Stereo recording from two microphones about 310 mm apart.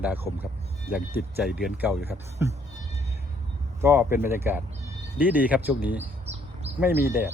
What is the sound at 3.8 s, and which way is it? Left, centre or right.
Speech, centre.